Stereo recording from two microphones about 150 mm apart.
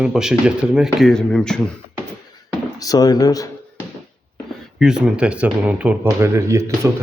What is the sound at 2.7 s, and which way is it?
Speech, 25° left (ahead or behind).